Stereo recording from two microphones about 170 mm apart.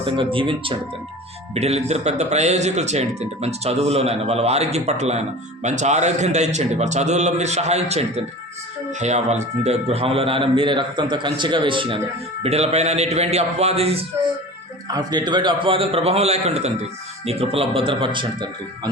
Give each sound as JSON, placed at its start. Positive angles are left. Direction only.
{"t": 0.0, "sound": "a man's voice", "side_deg": -30}
{"t": 14.9, "sound": "speech", "side_deg": -25}